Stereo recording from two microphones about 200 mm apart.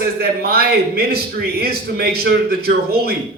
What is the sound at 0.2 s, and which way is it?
A man's voice, 50° right (ahead or behind).